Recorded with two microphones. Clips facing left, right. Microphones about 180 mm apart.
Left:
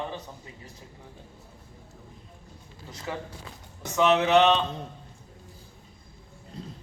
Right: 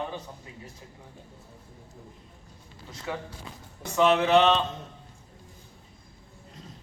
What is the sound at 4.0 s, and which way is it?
Speech, centre (ahead or behind).